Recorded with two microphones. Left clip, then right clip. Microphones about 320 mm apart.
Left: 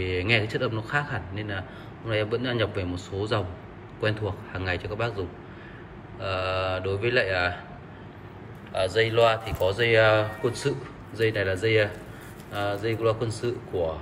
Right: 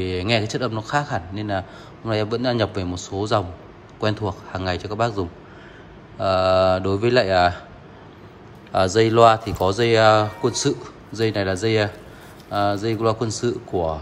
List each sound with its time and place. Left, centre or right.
0.0 s speech: centre
6.3 s speech: centre
9.0 s speech: centre